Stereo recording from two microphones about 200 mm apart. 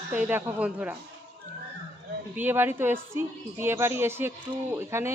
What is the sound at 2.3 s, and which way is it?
A woman's voice, 10° right (ahead or behind).